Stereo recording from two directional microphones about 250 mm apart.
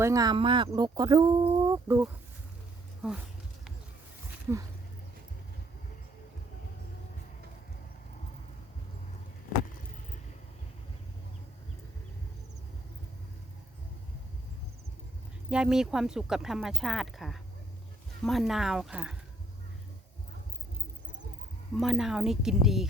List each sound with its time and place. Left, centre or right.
0.0 s speech: centre
15.4 s speech: centre
21.8 s speech: centre